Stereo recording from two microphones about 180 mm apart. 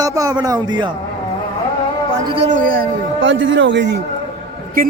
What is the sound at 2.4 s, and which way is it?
Speech, 50° right (ahead or behind).